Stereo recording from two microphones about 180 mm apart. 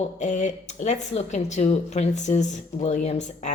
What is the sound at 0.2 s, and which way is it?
A woman's voice, 40° left (ahead or behind).